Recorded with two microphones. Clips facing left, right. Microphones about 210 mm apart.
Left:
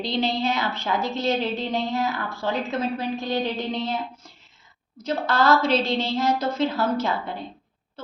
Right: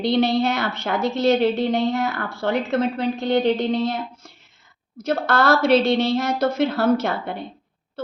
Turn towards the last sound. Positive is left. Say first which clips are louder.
# right 5 dB
turn(degrees=-65)  # may be behind; listen again after turning